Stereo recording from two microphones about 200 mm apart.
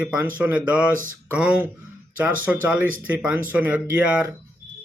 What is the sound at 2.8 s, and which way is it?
Speech, 45° right (ahead or behind).